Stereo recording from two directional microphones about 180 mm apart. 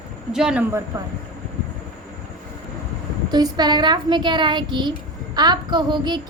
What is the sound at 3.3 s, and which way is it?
Speech, 25° right (ahead or behind).